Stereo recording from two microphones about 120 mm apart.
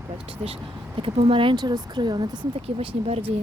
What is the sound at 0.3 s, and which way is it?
Speech, 55° right (ahead or behind).